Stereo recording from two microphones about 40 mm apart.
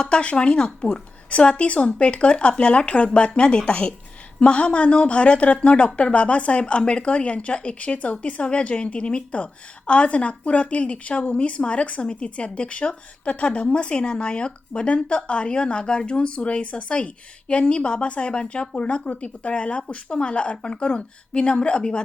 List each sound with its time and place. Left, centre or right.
0.0 s a woman's voice: left